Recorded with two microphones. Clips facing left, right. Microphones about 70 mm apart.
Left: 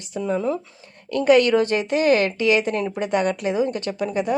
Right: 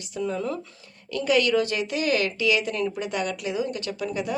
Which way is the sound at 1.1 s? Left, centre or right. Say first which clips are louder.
Left 6 dB; left.